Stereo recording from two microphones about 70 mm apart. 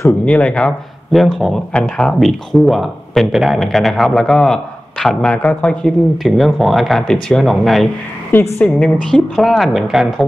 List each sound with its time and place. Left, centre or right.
0.2 s speech: centre
1.1 s speech: centre
2.1 s speech: centre
6.2 s speech: centre
8.3 s a woman's voice: left
8.6 s speech: centre